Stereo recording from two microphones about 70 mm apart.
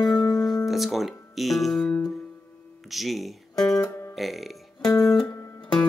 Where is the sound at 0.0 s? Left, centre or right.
Centre.